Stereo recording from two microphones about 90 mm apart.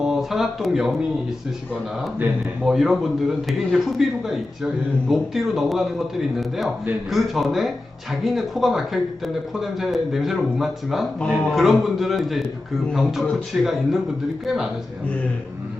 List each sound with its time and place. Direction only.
0.0 s speech: 5° right (ahead or behind)
1.7 s a man's voice: 20° right (ahead or behind)
2.6 s a man's voice: centre (ahead or behind)
7.1 s a man's voice: centre (ahead or behind)